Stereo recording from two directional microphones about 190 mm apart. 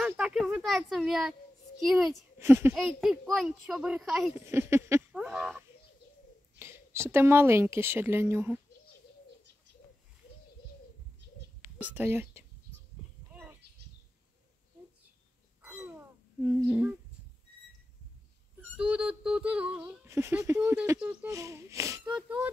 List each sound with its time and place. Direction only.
0.0 s a child's voice: 5° right (ahead or behind)
2.3 s speech: 10° right (ahead or behind)
2.7 s a child's voice: centre (ahead or behind)
4.5 s speech: 15° right (ahead or behind)
6.6 s speech: 15° right (ahead or behind)
11.8 s speech: 10° right (ahead or behind)
13.3 s bird: 10° right (ahead or behind)
15.6 s a sound: 10° right (ahead or behind)
18.8 s speech: 5° right (ahead or behind)